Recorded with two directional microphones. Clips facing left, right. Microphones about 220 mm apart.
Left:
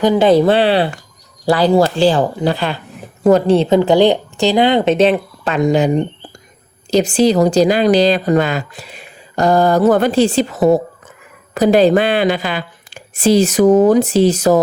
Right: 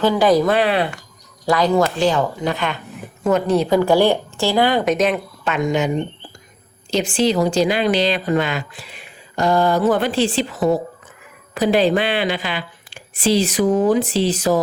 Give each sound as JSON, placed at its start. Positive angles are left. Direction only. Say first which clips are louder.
{"t": 0.0, "sound": "a woman's voice", "louder": "left 4 dB", "side_deg": 20}